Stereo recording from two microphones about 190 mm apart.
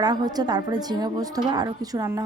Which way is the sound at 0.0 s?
20° right (ahead or behind).